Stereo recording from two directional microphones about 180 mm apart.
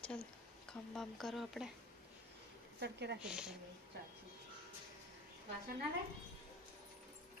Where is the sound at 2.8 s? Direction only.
70° right (ahead or behind).